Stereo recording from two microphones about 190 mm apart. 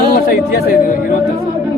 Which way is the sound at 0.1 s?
50° left (ahead or behind).